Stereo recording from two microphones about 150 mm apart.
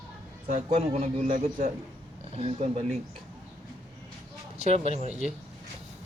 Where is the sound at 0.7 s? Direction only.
45° right (ahead or behind).